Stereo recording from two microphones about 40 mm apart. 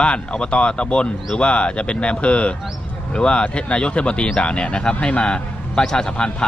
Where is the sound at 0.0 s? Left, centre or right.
Left.